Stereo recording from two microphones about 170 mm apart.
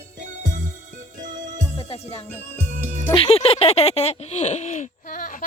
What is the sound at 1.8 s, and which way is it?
Music, 35° left (ahead or behind).